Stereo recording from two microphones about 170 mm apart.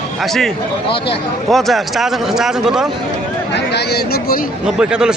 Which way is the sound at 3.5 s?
75° left (ahead or behind).